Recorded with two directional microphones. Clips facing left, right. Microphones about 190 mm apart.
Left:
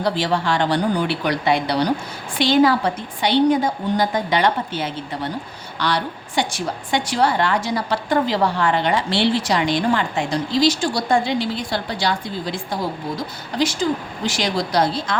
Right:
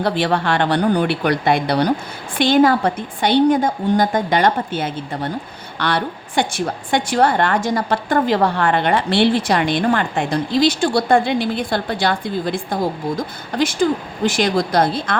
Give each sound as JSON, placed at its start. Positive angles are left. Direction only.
{"t": 0.0, "sound": "a woman's voice", "side_deg": -60}